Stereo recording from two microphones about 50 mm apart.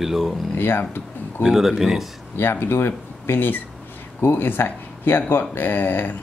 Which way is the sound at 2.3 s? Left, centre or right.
Left.